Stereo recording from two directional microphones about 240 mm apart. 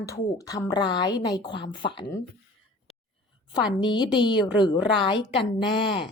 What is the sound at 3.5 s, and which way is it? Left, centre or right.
A woman's voice, centre.